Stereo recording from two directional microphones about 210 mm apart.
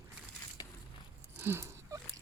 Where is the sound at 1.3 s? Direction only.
10° right (ahead or behind).